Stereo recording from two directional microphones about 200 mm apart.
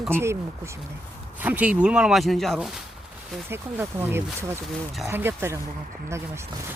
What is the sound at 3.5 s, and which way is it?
Speech, 10° right (ahead or behind).